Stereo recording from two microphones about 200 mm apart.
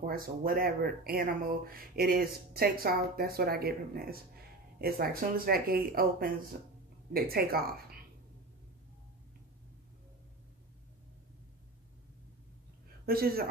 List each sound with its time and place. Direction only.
0.0 s speech: 45° right (ahead or behind)
13.0 s a woman's voice: 50° right (ahead or behind)